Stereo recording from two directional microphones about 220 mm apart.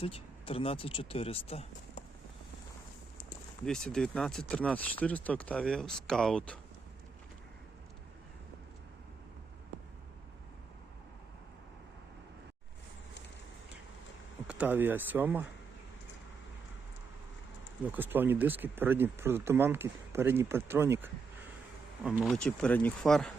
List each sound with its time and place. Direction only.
0.0 s speech: 25° left (ahead or behind)
3.7 s speech: 5° left (ahead or behind)
14.4 s speech: 5° right (ahead or behind)
17.8 s speech: 10° right (ahead or behind)